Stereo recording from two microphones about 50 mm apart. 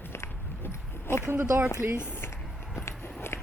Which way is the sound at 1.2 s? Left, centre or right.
Right.